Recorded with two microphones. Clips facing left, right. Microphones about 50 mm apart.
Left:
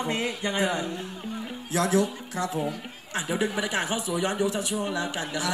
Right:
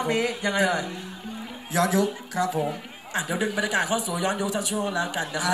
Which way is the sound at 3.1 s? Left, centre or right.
Right.